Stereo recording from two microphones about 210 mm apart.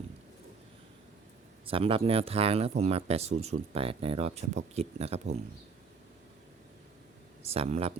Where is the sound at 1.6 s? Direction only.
25° right (ahead or behind).